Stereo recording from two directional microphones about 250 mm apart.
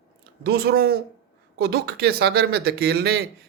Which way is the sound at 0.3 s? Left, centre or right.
Right.